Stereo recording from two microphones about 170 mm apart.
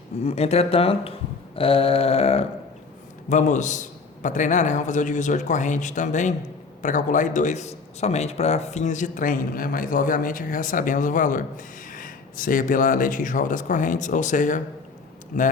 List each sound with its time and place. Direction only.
0.3 s speech: 35° left (ahead or behind)
3.2 s a man's voice: 45° left (ahead or behind)